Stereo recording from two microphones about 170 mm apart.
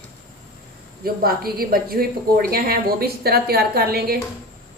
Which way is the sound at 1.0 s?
60° right (ahead or behind).